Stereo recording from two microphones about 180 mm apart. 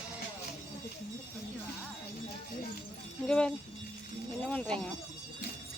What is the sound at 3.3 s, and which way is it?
Speech, 5° left (ahead or behind).